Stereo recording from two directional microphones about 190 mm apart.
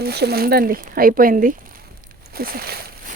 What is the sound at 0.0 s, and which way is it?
Speech, 60° right (ahead or behind).